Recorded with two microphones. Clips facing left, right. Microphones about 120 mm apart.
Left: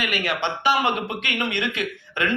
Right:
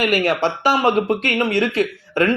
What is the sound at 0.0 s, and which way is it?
Speech, 40° right (ahead or behind).